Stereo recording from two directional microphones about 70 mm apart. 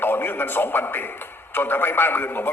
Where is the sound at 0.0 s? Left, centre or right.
Left.